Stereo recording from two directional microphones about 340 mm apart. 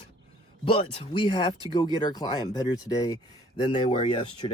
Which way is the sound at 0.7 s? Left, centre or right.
Centre.